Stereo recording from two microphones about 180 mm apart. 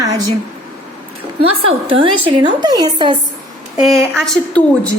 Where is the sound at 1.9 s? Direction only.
30° right (ahead or behind).